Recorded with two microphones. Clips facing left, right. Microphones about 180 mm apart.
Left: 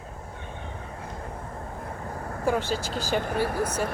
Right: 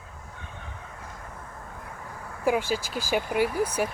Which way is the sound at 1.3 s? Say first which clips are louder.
Left 5 dB; 35° left (ahead or behind).